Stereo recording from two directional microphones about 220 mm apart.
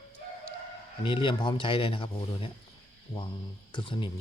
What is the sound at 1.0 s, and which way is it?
Speech, 20° left (ahead or behind).